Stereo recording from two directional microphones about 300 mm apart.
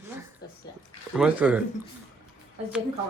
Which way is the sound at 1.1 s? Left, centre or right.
Centre.